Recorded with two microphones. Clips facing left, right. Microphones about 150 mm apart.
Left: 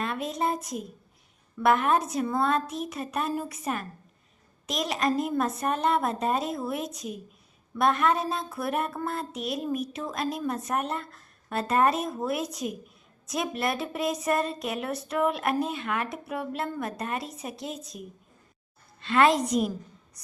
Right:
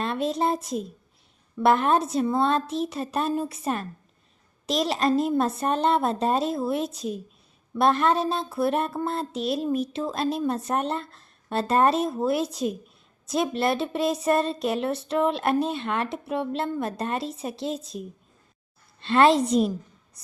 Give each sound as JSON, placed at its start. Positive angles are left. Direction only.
{"t": 0.0, "sound": "speech", "side_deg": -30}
{"t": 19.0, "sound": "speech", "side_deg": -30}